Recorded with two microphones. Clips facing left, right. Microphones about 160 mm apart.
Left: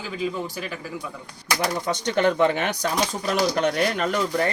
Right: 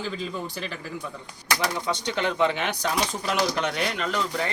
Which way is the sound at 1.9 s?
45° left (ahead or behind).